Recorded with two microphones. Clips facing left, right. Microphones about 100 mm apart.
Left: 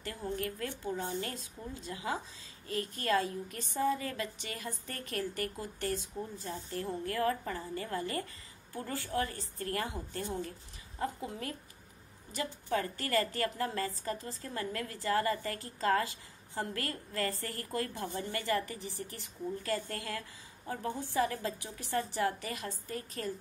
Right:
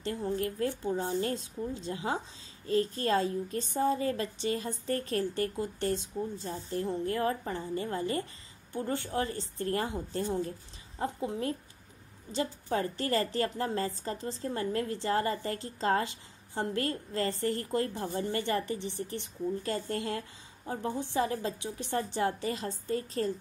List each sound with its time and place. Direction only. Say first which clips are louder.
0.0 s a woman's voice: right 5 dB; 25° right (ahead or behind)